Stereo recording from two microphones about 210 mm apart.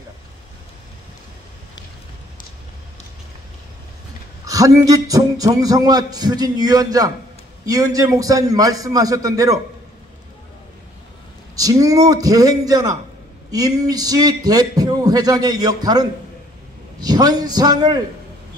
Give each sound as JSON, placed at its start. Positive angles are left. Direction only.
{"t": 4.5, "sound": "a man's voice", "side_deg": -15}
{"t": 11.5, "sound": "a man's voice", "side_deg": -15}